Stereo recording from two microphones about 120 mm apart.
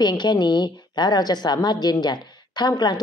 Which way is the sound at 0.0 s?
40° left (ahead or behind).